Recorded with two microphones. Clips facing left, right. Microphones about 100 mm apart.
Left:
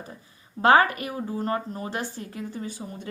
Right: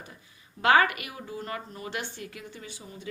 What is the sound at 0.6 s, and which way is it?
Speech, 35° left (ahead or behind).